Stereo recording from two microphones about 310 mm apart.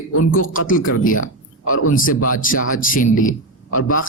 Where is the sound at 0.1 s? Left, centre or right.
Left.